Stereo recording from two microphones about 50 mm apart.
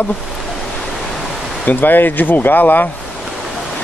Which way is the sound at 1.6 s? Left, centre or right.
Left.